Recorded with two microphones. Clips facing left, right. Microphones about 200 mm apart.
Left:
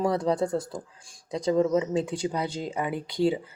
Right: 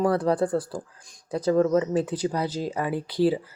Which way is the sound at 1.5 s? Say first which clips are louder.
Right 2 dB; 20° left (ahead or behind).